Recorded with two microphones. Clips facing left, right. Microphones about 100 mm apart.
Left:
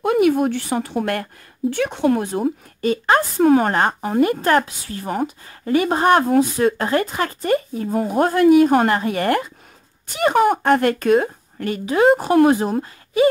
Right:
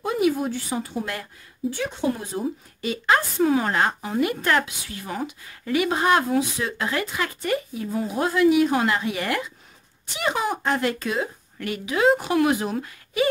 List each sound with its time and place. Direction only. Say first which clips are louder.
0.0 s speech: left 6 dB; 60° left (ahead or behind)
2.8 s a woman's voice: left 5 dB; 40° left (ahead or behind)
11.6 s speech: left 5 dB; 40° left (ahead or behind)